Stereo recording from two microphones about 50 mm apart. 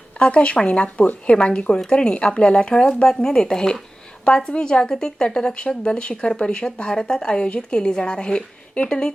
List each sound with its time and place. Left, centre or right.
0.2 s speech: left